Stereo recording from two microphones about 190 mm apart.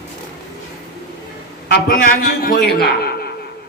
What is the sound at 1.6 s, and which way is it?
A man's voice, 50° left (ahead or behind).